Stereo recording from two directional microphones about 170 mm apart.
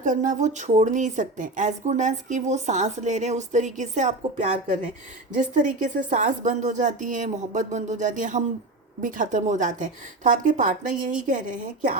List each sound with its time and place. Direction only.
0.0 s a woman's voice: 50° right (ahead or behind)